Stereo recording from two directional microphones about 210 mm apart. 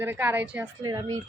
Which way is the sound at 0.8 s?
20° right (ahead or behind).